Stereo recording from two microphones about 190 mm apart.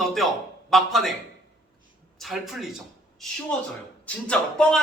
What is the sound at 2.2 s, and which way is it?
A man's voice, centre (ahead or behind).